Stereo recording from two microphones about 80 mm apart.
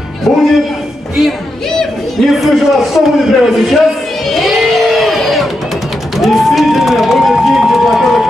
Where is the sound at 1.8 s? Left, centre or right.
Centre.